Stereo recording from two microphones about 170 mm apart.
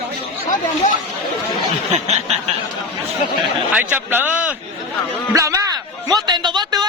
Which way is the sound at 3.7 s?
10° right (ahead or behind).